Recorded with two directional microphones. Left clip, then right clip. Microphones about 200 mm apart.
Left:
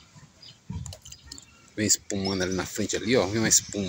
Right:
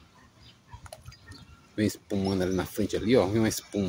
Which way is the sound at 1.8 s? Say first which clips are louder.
Left 2 dB; 15° right (ahead or behind).